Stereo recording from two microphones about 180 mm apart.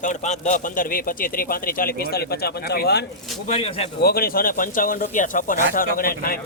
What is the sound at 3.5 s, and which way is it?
Speech, 35° left (ahead or behind).